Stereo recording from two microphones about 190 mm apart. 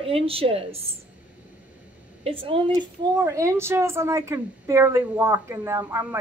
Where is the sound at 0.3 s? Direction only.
30° right (ahead or behind).